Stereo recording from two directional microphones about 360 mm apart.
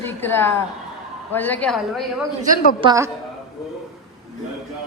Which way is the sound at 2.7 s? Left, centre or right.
Centre.